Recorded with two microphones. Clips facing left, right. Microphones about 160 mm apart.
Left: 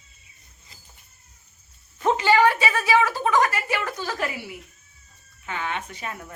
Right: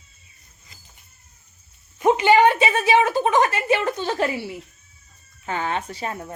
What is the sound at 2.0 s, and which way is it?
A woman's voice, 15° right (ahead or behind).